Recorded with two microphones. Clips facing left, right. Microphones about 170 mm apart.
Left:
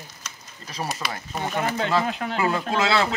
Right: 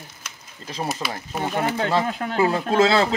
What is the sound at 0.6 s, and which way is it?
Speech, 25° right (ahead or behind).